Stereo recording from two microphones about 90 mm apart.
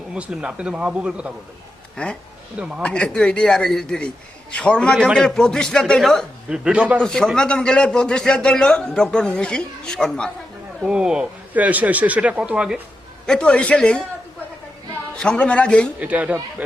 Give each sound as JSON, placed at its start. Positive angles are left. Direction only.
{"t": 0.1, "sound": "speech", "side_deg": -10}
{"t": 2.0, "sound": "a man's voice", "side_deg": 10}
{"t": 2.6, "sound": "speech", "side_deg": -15}
{"t": 2.8, "sound": "a man's voice", "side_deg": 10}
{"t": 6.5, "sound": "speech", "side_deg": -10}
{"t": 7.0, "sound": "a man's voice", "side_deg": 5}
{"t": 10.8, "sound": "speech", "side_deg": -10}
{"t": 13.2, "sound": "a man's voice", "side_deg": 10}
{"t": 15.1, "sound": "a man's voice", "side_deg": 10}
{"t": 16.0, "sound": "speech", "side_deg": -15}